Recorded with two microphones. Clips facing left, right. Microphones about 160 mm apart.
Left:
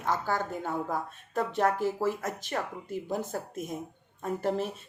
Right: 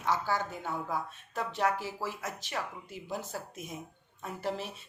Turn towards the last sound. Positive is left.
turn(degrees=45)  # may be behind; listen again after turning